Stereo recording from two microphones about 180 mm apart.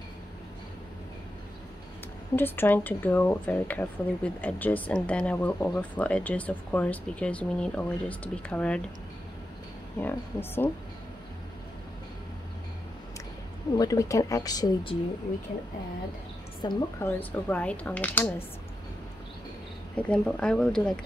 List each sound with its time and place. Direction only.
2.3 s speech: 10° left (ahead or behind)
9.9 s speech: 10° left (ahead or behind)
13.7 s speech: 20° left (ahead or behind)
16.6 s speech: 10° left (ahead or behind)
20.0 s speech: 5° left (ahead or behind)